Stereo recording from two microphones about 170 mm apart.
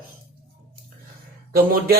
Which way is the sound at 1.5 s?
60° right (ahead or behind).